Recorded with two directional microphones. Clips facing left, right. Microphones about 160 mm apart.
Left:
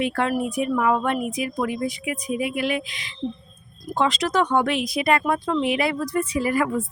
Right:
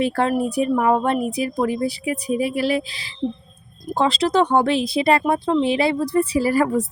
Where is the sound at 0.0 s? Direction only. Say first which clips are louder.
Right 3 dB; 35° right (ahead or behind).